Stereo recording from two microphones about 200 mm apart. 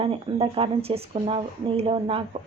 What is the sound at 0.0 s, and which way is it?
Speech, 25° right (ahead or behind).